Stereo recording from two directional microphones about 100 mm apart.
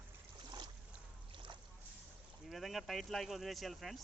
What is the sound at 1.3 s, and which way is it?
Boat, 60° right (ahead or behind).